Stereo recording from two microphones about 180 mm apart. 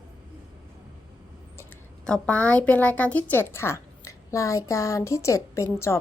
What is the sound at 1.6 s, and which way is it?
A woman's voice, 5° left (ahead or behind).